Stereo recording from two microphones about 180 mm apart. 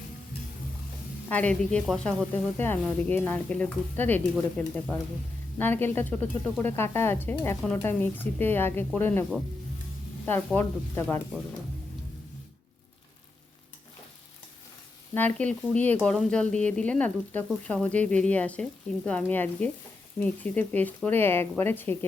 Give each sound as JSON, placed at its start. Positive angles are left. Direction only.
{"t": 1.3, "sound": "speech", "side_deg": 10}
{"t": 10.2, "sound": "speech", "side_deg": 10}
{"t": 15.1, "sound": "speech", "side_deg": 10}